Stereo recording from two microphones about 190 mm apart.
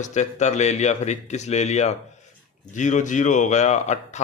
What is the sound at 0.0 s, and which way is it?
Speech, 40° left (ahead or behind).